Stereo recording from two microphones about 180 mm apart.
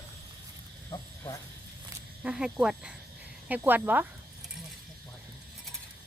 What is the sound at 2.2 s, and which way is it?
Speech, 5° right (ahead or behind).